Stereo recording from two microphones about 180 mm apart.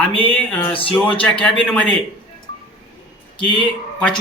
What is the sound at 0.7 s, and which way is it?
Speech, 30° left (ahead or behind).